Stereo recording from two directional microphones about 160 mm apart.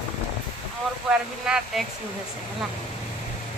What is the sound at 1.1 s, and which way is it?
Speech, 5° right (ahead or behind).